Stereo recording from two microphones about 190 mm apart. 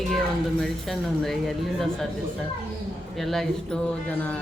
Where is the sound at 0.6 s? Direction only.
Centre (ahead or behind).